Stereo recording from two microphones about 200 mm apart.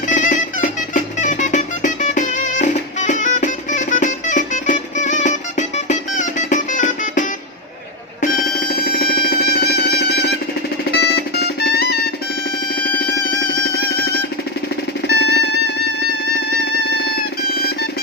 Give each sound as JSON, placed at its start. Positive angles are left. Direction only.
{"t": 0.1, "sound": "music", "side_deg": 40}
{"t": 8.7, "sound": "music", "side_deg": 50}
{"t": 15.0, "sound": "music", "side_deg": 55}